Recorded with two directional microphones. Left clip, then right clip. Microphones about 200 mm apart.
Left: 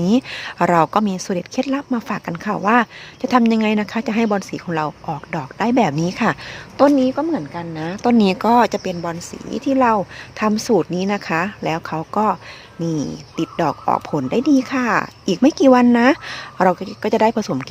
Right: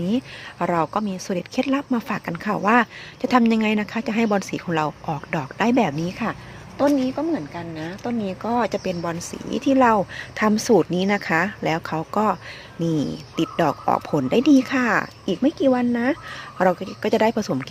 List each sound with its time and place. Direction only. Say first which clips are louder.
0.0 s a woman's voice: left 7 dB; 20° left (ahead or behind)
6.7 s speech: left 6 dB; 40° left (ahead or behind)
8.4 s a woman's voice: left 5 dB; 25° left (ahead or behind); by 15.0 s 5° left (ahead or behind)
15.3 s a woman's voice: left 7 dB; 25° left (ahead or behind)
16.6 s a woman's voice: left 3 dB; 15° left (ahead or behind)